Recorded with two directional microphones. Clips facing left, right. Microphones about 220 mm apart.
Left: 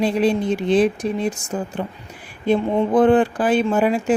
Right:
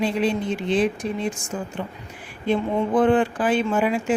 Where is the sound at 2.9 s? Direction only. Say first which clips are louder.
Left 4 dB; 40° left (ahead or behind).